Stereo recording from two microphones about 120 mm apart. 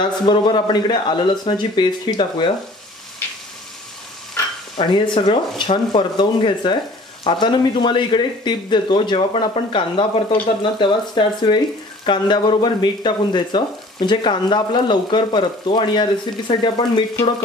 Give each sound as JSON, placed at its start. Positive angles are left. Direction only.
{"t": 0.0, "sound": "speech", "side_deg": 40}
{"t": 4.7, "sound": "speech", "side_deg": 40}